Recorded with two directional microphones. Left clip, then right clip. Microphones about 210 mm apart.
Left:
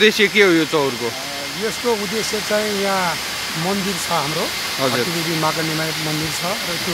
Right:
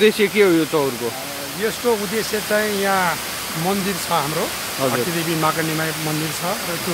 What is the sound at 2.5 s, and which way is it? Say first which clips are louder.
Speech: right 1 dB; 5° right (ahead or behind).